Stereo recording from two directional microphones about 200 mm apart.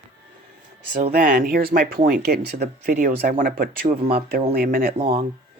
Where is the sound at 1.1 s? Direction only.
45° right (ahead or behind).